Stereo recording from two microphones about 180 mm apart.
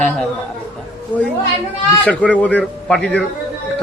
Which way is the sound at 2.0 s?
5° left (ahead or behind).